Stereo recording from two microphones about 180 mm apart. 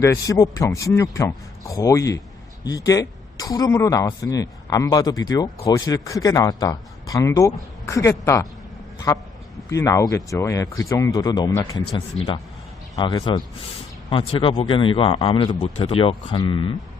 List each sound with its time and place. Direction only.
0.0 s speech: 15° left (ahead or behind)
9.6 s speech: 15° left (ahead or behind)
12.1 s a man's voice: 35° left (ahead or behind)
13.0 s speech: 25° left (ahead or behind)